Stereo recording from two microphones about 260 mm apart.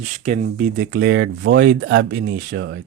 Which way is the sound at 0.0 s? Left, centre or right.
Right.